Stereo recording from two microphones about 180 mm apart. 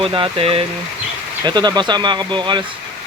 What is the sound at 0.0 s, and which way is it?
Speech, 30° right (ahead or behind).